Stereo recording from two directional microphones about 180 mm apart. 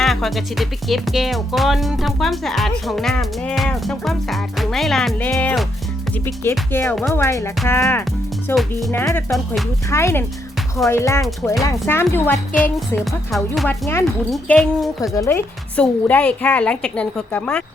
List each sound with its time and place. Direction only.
0.0 s a woman's voice: centre (ahead or behind)
6.8 s speech: centre (ahead or behind)
7.1 s a woman's voice: 15° left (ahead or behind)
9.3 s speech: centre (ahead or behind)
9.9 s a woman's voice: 15° left (ahead or behind)
13.0 s speech: centre (ahead or behind)
15.1 s a woman's voice: 15° left (ahead or behind)